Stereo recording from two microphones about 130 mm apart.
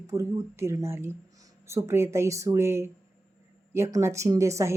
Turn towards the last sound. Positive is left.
turn(degrees=-20)  # may be behind; listen again after turning